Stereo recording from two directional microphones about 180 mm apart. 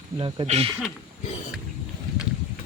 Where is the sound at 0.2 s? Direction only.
30° right (ahead or behind).